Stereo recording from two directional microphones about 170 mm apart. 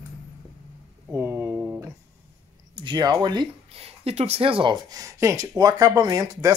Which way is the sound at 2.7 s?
25° right (ahead or behind).